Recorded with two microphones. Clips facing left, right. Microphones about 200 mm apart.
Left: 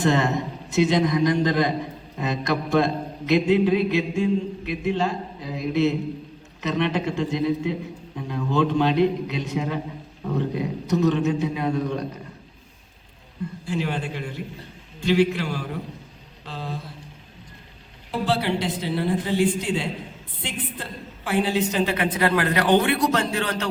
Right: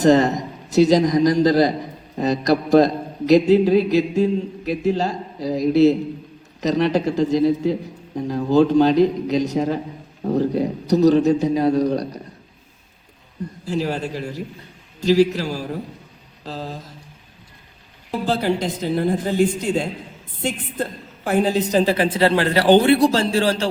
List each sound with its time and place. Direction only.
0.0 s a man's voice: 40° right (ahead or behind)
13.4 s a man's voice: 40° right (ahead or behind)
18.3 s a woman's voice: 45° right (ahead or behind)